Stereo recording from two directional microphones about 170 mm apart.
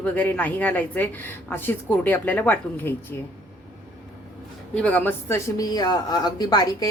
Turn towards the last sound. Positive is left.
turn(degrees=25)  # may be behind; listen again after turning